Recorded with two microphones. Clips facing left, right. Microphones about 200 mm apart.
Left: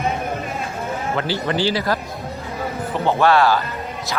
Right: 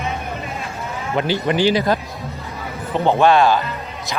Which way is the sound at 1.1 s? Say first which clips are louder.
Right 5 dB; 15° right (ahead or behind).